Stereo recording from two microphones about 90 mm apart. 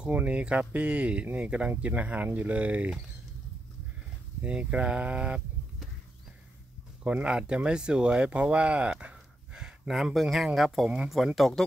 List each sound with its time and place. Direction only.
0.0 s speech: 15° right (ahead or behind)
4.4 s speech: 15° right (ahead or behind)
7.0 s speech: 15° right (ahead or behind)